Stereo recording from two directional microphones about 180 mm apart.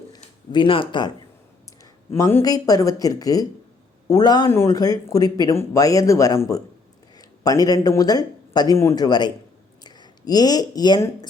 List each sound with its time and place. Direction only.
0.5 s a man's voice: 30° left (ahead or behind)